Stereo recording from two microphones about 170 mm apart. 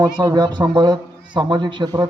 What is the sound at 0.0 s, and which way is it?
A man's voice, 25° right (ahead or behind).